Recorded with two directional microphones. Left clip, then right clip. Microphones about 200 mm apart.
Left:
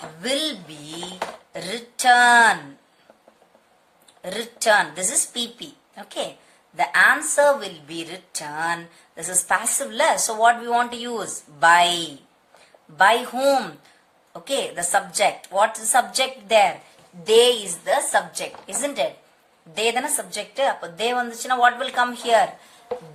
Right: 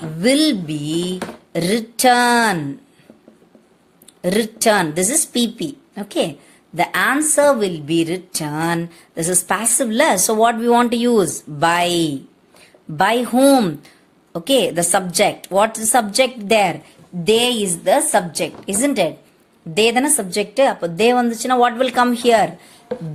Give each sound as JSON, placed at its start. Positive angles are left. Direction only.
{"t": 0.2, "sound": "a woman's voice", "side_deg": -40}
{"t": 1.5, "sound": "speech", "side_deg": -45}
{"t": 4.2, "sound": "a woman's voice", "side_deg": -40}
{"t": 13.0, "sound": "a woman's voice", "side_deg": -40}